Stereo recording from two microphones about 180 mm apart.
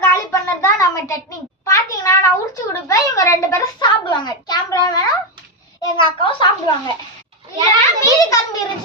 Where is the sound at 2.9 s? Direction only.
20° left (ahead or behind).